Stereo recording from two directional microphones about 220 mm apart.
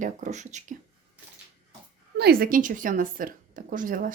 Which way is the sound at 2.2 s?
45° right (ahead or behind).